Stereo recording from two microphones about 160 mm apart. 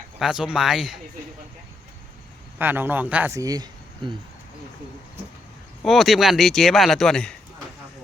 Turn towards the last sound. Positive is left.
turn(degrees=5)  # may be behind; listen again after turning